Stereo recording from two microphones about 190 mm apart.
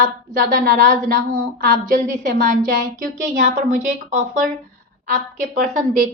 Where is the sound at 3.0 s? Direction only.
45° right (ahead or behind).